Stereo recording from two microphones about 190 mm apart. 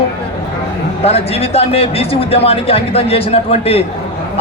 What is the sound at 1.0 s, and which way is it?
A man's voice, 30° left (ahead or behind).